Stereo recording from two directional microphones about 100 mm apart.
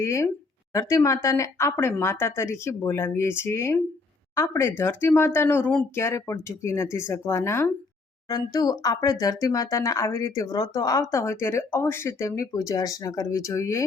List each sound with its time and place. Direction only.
0.0 s speech: 30° left (ahead or behind)
8.3 s speech: 40° left (ahead or behind)